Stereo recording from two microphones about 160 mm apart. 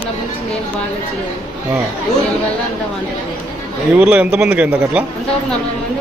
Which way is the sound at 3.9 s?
10° right (ahead or behind).